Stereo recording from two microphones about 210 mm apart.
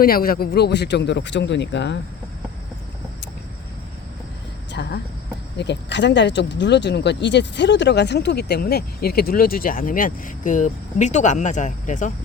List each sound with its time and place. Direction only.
0.0 s a man's voice: 45° left (ahead or behind)
4.7 s a sound: 55° left (ahead or behind)
5.5 s speech: 55° left (ahead or behind); by 12.1 s 35° left (ahead or behind)